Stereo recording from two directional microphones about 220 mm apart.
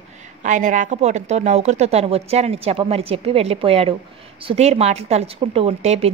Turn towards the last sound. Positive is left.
turn(degrees=-30)  # may be behind; listen again after turning